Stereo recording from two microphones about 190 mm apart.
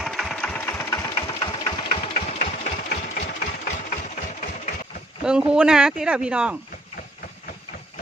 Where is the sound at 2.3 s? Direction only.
35° left (ahead or behind).